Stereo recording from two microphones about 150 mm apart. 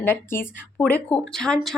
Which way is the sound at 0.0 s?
15° left (ahead or behind).